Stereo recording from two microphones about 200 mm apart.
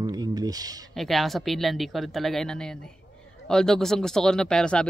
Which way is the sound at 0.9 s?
Centre (ahead or behind).